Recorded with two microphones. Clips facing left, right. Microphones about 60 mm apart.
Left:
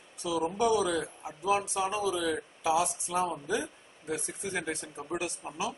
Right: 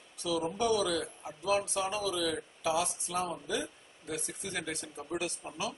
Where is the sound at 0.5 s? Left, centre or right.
Centre.